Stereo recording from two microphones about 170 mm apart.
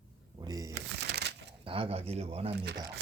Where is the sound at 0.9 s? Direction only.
80° right.